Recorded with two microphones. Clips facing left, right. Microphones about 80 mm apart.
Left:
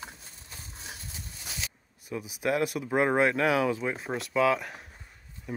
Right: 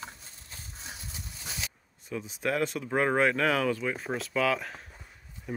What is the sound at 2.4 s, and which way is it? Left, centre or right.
Speech, centre.